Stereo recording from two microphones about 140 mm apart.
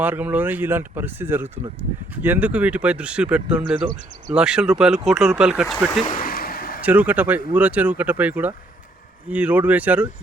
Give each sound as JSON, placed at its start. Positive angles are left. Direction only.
{"t": 0.0, "sound": "speech", "side_deg": -10}
{"t": 6.1, "sound": "a sound", "side_deg": 85}
{"t": 6.8, "sound": "speech", "side_deg": -10}